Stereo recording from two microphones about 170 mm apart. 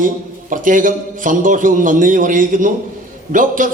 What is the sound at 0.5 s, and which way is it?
A man's voice, 50° right (ahead or behind).